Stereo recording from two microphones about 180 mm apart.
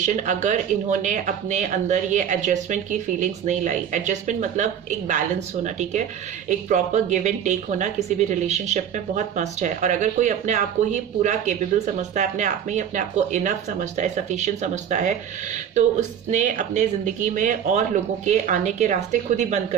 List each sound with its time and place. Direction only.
0.0 s a woman's voice: 40° right (ahead or behind)